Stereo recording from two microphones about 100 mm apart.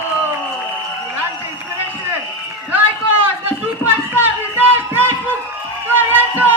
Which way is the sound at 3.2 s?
20° right (ahead or behind).